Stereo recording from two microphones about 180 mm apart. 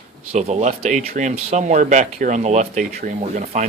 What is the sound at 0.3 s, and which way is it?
Speech, 40° right (ahead or behind).